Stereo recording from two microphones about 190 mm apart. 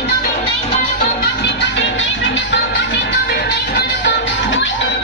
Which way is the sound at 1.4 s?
65° left (ahead or behind).